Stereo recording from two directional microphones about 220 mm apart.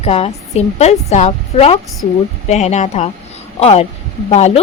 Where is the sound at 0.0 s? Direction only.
30° left (ahead or behind).